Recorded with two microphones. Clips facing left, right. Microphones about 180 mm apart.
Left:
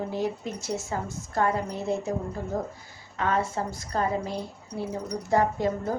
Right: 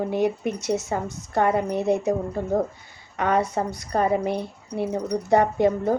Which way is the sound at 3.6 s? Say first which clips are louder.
Right 5 dB; 65° right (ahead or behind).